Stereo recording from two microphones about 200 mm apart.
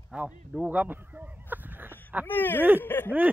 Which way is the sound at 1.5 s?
10° right (ahead or behind).